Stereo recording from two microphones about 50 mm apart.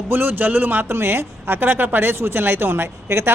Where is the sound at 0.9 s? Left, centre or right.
Right.